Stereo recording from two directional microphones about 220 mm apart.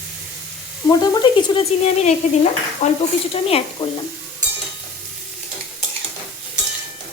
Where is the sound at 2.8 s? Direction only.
30° left (ahead or behind).